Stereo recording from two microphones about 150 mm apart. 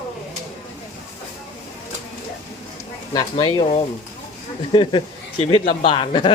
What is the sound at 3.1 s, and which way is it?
Speech, 25° left (ahead or behind).